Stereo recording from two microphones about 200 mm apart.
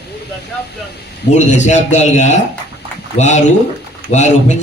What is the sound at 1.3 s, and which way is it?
A man's voice, 35° left (ahead or behind).